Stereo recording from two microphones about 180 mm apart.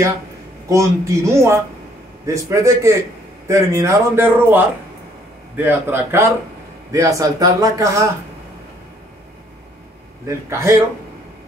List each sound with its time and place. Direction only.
0.7 s speech: 15° right (ahead or behind)
10.2 s speech: 15° right (ahead or behind)